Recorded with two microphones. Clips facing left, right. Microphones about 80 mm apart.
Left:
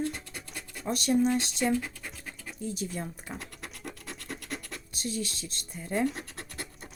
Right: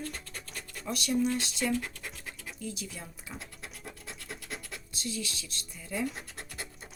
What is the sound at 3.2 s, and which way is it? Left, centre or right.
Scratch, left.